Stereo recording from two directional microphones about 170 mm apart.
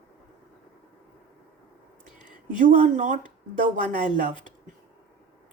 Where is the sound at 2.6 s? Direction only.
50° right (ahead or behind).